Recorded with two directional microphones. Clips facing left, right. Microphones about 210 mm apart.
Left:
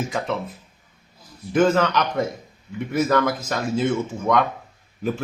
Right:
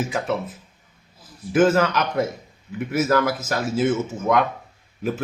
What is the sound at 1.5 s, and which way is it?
Speech, 5° right (ahead or behind).